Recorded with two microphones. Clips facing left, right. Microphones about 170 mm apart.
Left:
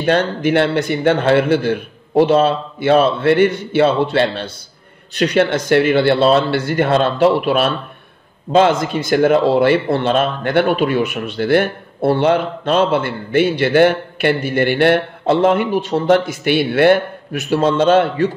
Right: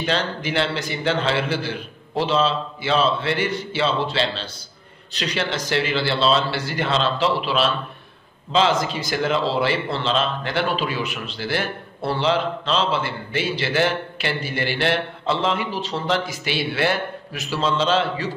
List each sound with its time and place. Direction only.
0.0 s speech: 55° left (ahead or behind)